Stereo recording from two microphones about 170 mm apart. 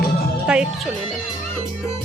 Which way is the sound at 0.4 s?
5° right (ahead or behind).